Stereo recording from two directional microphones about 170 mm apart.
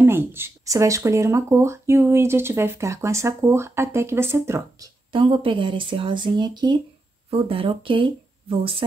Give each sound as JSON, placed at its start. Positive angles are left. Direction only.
{"t": 0.0, "sound": "speech", "side_deg": -15}
{"t": 5.2, "sound": "speech", "side_deg": -30}